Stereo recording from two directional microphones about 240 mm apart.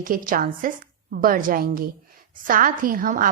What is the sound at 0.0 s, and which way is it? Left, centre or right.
A woman's voice, right.